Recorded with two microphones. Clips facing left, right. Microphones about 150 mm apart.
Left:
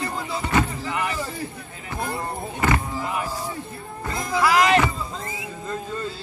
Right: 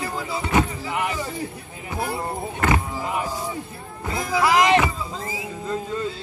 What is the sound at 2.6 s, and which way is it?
Music, 15° right (ahead or behind).